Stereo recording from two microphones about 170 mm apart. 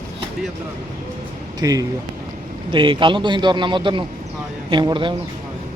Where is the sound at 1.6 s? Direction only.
20° right (ahead or behind).